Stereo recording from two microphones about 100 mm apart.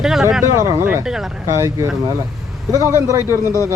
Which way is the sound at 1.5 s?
30° right (ahead or behind).